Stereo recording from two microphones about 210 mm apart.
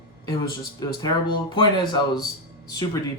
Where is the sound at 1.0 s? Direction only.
20° left (ahead or behind).